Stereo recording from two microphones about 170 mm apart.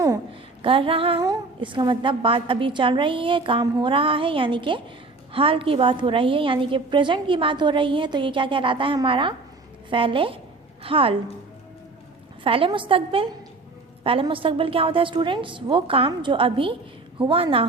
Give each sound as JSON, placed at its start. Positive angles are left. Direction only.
{"t": 0.6, "sound": "a woman's voice", "side_deg": -30}
{"t": 12.4, "sound": "a woman's voice", "side_deg": -30}